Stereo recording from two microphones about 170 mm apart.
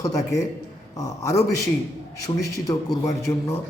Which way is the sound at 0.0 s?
20° left (ahead or behind).